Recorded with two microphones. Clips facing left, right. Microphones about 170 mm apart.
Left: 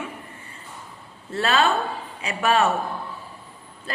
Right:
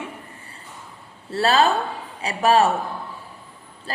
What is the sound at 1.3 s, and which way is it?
A woman's voice, 35° right (ahead or behind).